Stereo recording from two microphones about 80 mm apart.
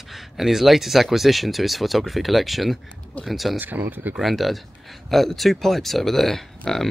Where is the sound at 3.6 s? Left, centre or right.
Right.